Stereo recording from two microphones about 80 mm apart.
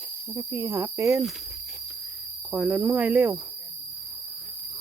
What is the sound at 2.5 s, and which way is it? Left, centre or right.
Speech, centre.